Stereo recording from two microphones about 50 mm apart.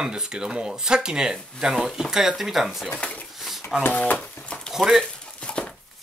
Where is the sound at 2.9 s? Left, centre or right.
Left.